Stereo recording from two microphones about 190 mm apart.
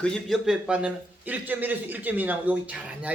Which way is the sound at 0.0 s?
Centre (ahead or behind).